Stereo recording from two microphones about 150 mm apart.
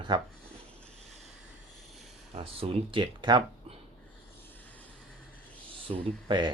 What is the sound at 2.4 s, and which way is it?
Speech, 40° right (ahead or behind).